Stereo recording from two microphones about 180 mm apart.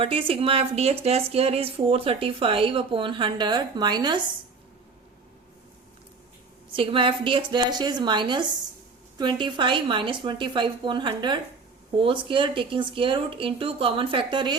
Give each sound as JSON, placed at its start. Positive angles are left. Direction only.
{"t": 0.0, "sound": "speech", "side_deg": -30}
{"t": 6.7, "sound": "speech", "side_deg": -30}